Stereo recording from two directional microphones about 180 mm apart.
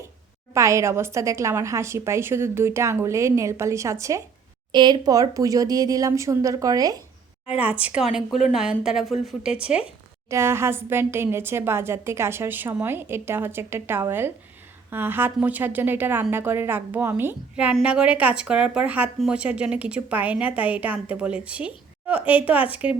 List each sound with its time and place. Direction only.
0.5 s a woman's voice: 15° right (ahead or behind)
7.5 s a woman's voice: 5° right (ahead or behind)